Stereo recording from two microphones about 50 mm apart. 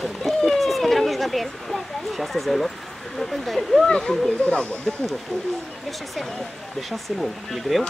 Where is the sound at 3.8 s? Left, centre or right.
Centre.